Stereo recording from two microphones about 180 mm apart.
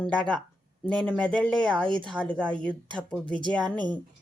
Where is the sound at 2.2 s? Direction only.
5° left (ahead or behind).